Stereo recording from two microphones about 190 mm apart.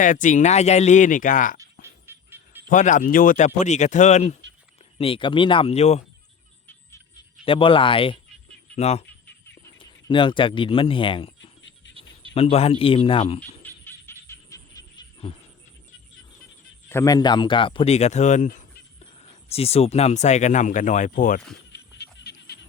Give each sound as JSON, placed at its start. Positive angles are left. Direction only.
{"t": 0.0, "sound": "speech", "side_deg": 40}
{"t": 2.0, "sound": "a sound", "side_deg": -10}
{"t": 2.6, "sound": "speech", "side_deg": 40}
{"t": 7.4, "sound": "speech", "side_deg": 25}
{"t": 12.3, "sound": "speech", "side_deg": 30}
{"t": 13.6, "sound": "music", "side_deg": 10}
{"t": 16.9, "sound": "speech", "side_deg": 15}
{"t": 21.7, "sound": "music", "side_deg": 60}